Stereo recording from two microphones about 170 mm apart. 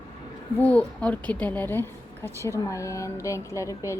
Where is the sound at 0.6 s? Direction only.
10° left (ahead or behind).